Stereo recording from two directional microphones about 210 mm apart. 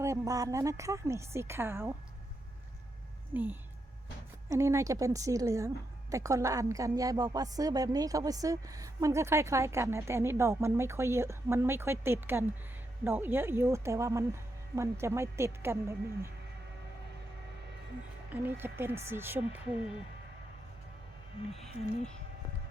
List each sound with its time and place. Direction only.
0.0 s a woman's voice: 15° right (ahead or behind)
3.3 s a woman's voice: 10° right (ahead or behind)
18.3 s a woman's voice: 10° right (ahead or behind)